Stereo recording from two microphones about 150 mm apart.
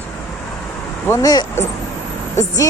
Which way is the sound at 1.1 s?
25° left (ahead or behind).